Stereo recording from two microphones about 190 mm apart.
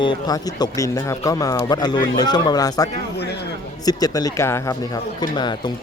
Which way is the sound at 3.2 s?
60° left (ahead or behind).